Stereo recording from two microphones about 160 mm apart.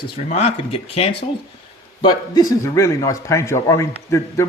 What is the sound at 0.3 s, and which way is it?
Speech, 40° left (ahead or behind).